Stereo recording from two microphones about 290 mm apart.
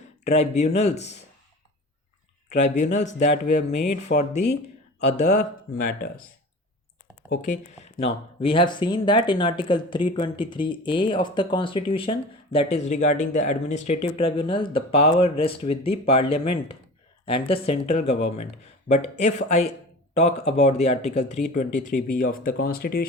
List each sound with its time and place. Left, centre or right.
0.3 s speech: left
2.5 s speech: left
4.1 s speech: left
7.3 s speech: left